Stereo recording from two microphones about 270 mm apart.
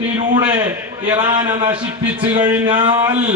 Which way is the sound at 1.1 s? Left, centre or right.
Centre.